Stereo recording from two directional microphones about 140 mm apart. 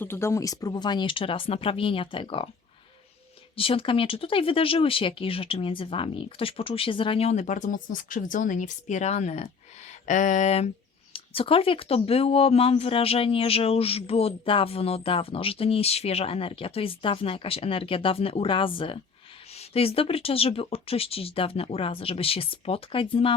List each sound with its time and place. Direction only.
0.0 s speech: 15° left (ahead or behind); by 2.5 s 40° left (ahead or behind)
3.5 s speech: 40° left (ahead or behind)
10.1 s a sound: 65° left (ahead or behind)
11.1 s speech: 40° left (ahead or behind)